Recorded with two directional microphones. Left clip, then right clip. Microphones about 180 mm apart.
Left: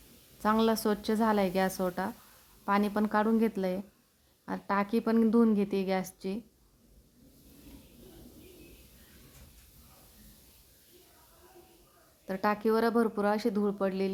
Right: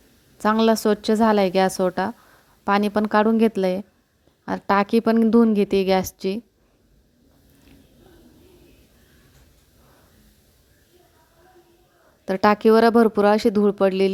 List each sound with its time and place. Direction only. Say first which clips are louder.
0.3 s a woman's voice: right 9 dB; 40° right (ahead or behind)
12.2 s speech: right 12 dB; 45° right (ahead or behind)